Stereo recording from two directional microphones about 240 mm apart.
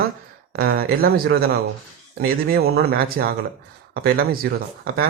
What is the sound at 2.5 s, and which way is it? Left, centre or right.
Speech, right.